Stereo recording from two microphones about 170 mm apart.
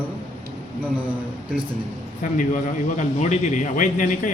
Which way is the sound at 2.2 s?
50° left (ahead or behind).